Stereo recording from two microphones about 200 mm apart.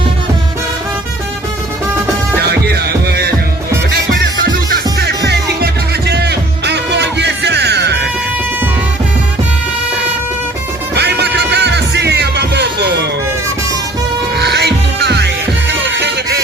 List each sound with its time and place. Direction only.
2.4 s music: 55° right (ahead or behind)
10.9 s music: 55° right (ahead or behind)
14.3 s music: 55° right (ahead or behind)